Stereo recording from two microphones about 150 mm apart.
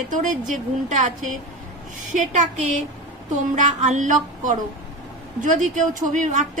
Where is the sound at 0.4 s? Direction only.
55° right (ahead or behind).